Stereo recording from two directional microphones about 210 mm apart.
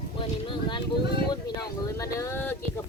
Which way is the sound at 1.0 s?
50° left (ahead or behind).